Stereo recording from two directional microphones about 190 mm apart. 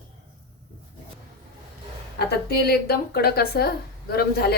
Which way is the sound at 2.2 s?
55° left (ahead or behind).